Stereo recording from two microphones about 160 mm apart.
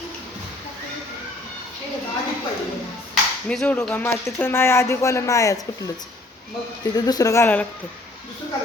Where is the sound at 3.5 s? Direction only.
5° left (ahead or behind).